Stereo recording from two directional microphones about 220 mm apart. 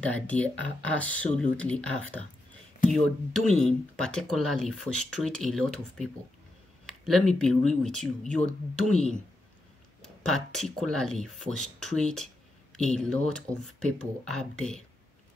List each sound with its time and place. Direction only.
0.0 s speech: 5° left (ahead or behind)
6.9 s speech: centre (ahead or behind)